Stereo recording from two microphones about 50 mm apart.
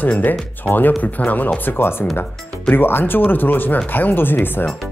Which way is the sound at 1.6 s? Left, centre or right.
Left.